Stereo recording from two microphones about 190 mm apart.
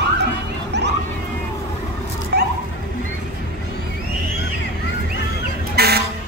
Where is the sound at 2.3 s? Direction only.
60° right (ahead or behind).